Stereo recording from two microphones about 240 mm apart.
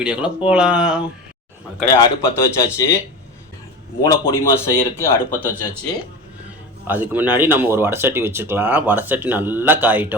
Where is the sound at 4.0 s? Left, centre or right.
Centre.